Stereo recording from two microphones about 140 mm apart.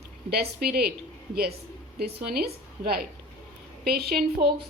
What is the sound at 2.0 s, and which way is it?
A woman's voice, 90° right.